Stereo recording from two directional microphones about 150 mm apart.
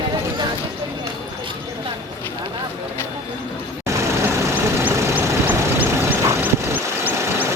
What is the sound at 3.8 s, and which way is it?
Vehicle, 20° right (ahead or behind).